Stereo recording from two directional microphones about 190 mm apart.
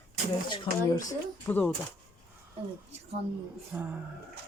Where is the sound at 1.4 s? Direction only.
10° left (ahead or behind).